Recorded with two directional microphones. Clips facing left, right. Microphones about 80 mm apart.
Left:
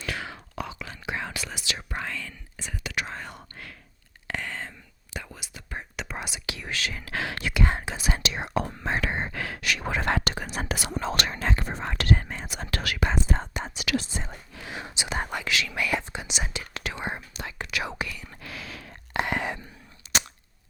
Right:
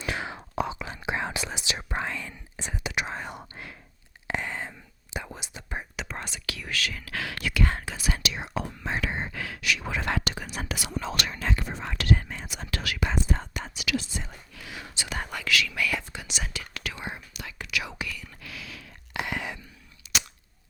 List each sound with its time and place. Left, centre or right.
0.0 s whispering: right
6.0 s whispering: centre; by 8.3 s left
8.3 s whispering: left
13.3 s whispering: left
13.7 s whispering: left